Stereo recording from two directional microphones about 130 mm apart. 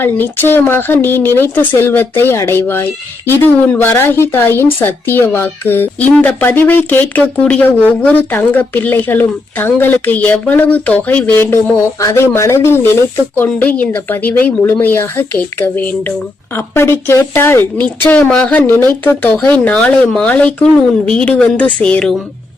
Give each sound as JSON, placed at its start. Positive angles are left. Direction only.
{"t": 0.0, "sound": "a woman's voice", "side_deg": 15}